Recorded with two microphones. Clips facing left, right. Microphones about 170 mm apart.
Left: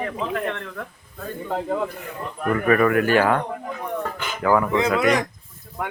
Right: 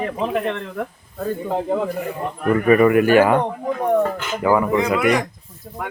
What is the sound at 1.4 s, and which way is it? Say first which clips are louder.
Speech: right 2 dB; 20° right (ahead or behind).